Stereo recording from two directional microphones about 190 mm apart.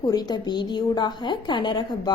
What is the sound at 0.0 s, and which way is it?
A woman's voice, 20° left (ahead or behind).